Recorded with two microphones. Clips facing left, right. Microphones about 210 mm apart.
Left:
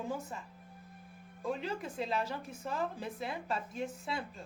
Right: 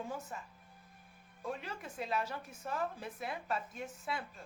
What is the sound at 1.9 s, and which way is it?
Speech, 25° left (ahead or behind).